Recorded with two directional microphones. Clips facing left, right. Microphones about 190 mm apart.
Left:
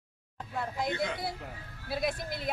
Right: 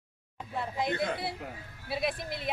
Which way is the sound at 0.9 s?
55° right (ahead or behind).